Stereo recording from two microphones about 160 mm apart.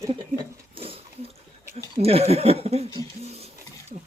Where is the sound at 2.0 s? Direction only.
40° right (ahead or behind).